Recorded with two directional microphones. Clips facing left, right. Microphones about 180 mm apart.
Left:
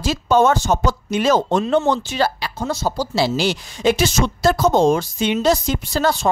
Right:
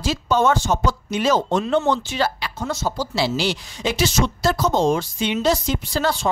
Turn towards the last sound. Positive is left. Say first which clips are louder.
# left 3 dB
turn(degrees=45)  # may be behind; listen again after turning